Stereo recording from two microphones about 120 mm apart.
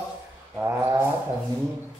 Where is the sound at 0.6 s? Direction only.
20° right (ahead or behind).